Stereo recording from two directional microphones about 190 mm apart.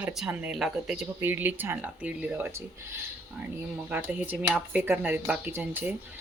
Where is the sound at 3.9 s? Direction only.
10° right (ahead or behind).